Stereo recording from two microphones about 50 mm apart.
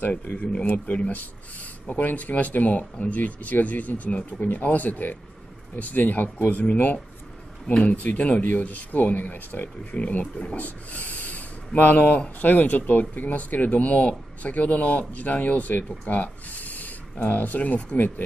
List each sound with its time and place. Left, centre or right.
0.3 s a man's voice: left